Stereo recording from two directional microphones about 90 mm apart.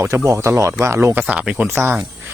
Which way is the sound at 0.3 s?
30° right (ahead or behind).